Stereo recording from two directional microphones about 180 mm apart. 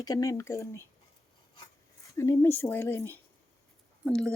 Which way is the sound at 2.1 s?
15° left (ahead or behind).